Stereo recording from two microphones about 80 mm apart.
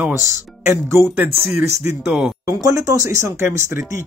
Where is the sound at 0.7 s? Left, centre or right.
Right.